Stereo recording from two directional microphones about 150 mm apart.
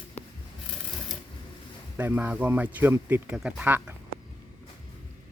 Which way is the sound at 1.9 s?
10° right (ahead or behind).